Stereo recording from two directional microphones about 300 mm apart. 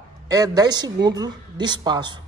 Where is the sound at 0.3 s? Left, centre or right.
Centre.